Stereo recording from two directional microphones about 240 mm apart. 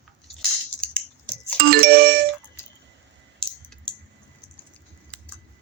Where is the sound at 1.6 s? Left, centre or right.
Right.